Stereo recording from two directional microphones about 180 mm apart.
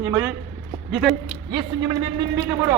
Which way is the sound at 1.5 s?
25° right (ahead or behind).